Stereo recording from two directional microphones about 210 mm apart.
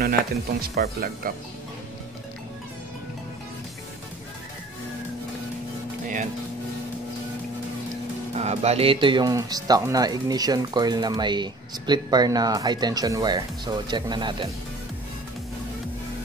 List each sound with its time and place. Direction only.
0.6 s speech: 45° right (ahead or behind)
8.4 s speech: 30° right (ahead or behind)